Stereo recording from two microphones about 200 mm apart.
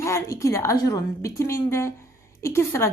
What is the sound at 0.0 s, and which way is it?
A woman's voice, 15° left (ahead or behind).